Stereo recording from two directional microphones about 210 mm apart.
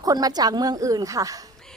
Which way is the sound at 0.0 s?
15° right (ahead or behind).